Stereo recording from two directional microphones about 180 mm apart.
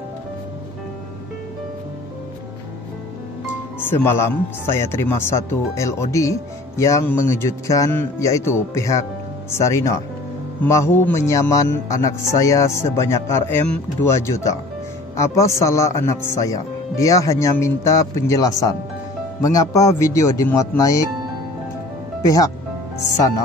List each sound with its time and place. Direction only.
3.8 s speech: 15° left (ahead or behind)
22.2 s speech: 20° left (ahead or behind)